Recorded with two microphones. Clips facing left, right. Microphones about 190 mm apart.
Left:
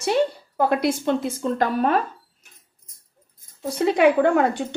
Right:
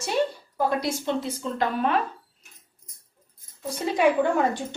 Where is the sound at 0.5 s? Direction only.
60° left (ahead or behind).